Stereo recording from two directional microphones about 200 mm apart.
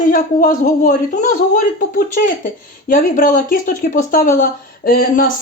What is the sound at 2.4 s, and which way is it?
Speech, 40° left (ahead or behind).